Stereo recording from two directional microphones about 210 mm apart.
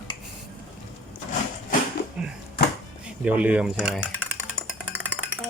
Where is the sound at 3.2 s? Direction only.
5° right (ahead or behind).